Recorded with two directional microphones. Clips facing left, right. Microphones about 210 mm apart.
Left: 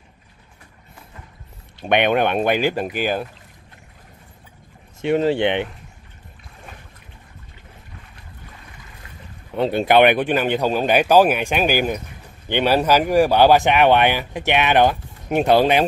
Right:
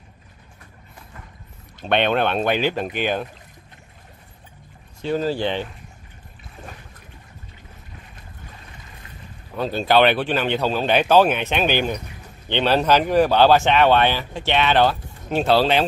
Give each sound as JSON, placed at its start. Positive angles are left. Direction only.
{"t": 1.9, "sound": "speech", "side_deg": 15}
{"t": 5.3, "sound": "speech", "side_deg": 70}
{"t": 9.6, "sound": "speech", "side_deg": 20}